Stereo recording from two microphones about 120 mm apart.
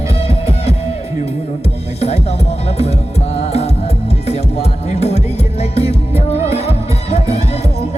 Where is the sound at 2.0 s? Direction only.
60° left (ahead or behind).